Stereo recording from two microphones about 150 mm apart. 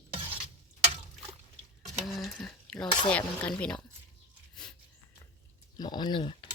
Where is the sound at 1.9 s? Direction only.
Centre (ahead or behind).